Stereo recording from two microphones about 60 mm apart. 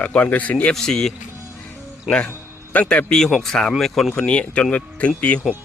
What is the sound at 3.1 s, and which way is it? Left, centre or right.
Speech, centre.